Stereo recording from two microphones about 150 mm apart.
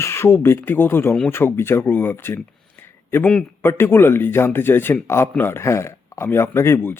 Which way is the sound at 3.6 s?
15° left (ahead or behind).